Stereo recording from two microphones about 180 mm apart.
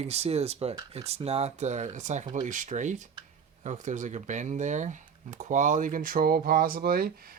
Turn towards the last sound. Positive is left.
turn(degrees=-55)  # may be behind; listen again after turning